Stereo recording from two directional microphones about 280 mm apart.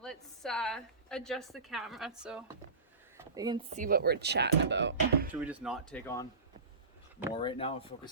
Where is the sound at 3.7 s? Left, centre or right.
Right.